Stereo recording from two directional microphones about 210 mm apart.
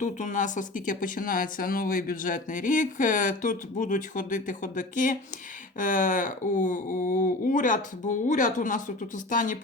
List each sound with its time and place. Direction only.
0.0 s speech: 35° left (ahead or behind)